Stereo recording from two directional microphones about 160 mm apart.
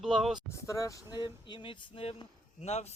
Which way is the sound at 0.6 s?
20° left (ahead or behind).